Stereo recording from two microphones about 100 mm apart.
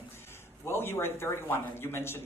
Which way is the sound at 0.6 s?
25° left (ahead or behind).